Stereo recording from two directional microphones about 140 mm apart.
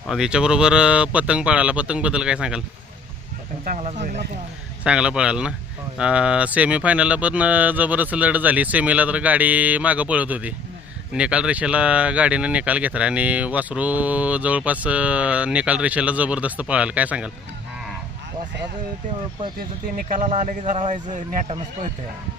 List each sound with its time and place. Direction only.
0.1 s speech: 5° right (ahead or behind)
3.6 s speech: 65° right (ahead or behind)
4.8 s speech: 5° right (ahead or behind)
19.5 s speech: 80° right; by 21.2 s 65° right (ahead or behind)